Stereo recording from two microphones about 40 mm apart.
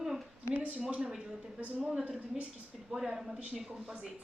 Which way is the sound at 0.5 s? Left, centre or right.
Right.